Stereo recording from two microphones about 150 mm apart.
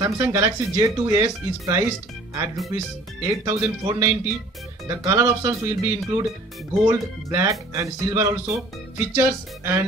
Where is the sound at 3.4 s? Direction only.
20° right (ahead or behind).